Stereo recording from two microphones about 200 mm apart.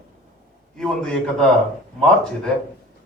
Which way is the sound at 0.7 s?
5° left (ahead or behind).